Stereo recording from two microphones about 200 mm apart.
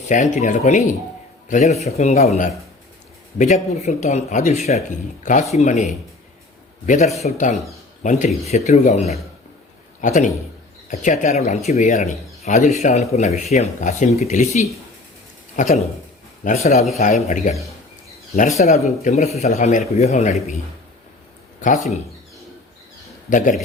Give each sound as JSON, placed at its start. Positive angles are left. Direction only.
{"t": 0.1, "sound": "speech", "side_deg": 40}
{"t": 21.6, "sound": "speech", "side_deg": 40}
{"t": 23.3, "sound": "speech", "side_deg": 40}